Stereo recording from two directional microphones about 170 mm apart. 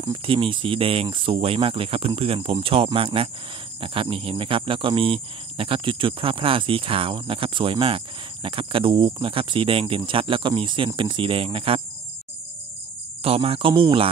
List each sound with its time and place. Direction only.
0.0 s speech: 30° right (ahead or behind)
13.2 s speech: 35° right (ahead or behind)